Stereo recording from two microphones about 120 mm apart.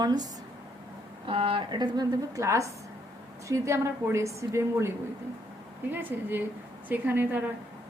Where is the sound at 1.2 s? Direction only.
45° right (ahead or behind); by 4.9 s 25° right (ahead or behind).